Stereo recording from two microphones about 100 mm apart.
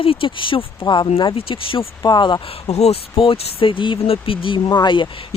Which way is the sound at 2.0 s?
45° left (ahead or behind).